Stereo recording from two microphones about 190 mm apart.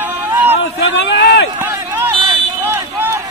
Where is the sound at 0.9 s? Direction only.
65° left (ahead or behind).